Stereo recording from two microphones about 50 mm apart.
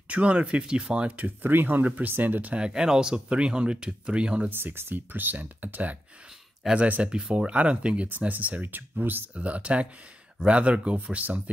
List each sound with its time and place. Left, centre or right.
0.1 s speech: right
1.2 s speech: right
2.5 s speech: centre
4.5 s speech: right
6.6 s speech: centre
7.0 s speech: centre